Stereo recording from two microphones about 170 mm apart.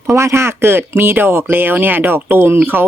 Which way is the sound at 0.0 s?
15° right (ahead or behind).